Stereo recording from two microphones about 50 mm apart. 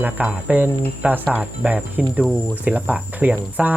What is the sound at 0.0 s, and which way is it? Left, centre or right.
Speech, right.